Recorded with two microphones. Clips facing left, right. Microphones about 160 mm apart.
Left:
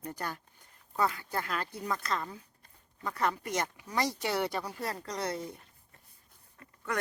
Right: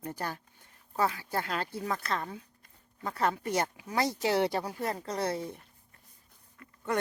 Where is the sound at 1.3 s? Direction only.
25° right (ahead or behind).